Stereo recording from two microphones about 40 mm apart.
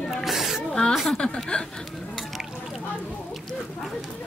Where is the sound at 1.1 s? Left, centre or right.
Left.